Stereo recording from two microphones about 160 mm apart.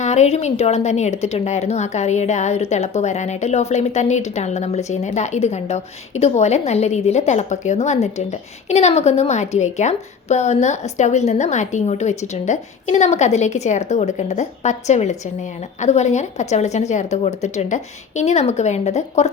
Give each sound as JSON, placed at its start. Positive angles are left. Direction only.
{"t": 0.0, "sound": "a woman's voice", "side_deg": 45}